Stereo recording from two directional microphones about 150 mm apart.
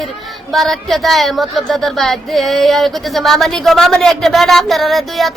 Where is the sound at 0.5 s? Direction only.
Centre (ahead or behind).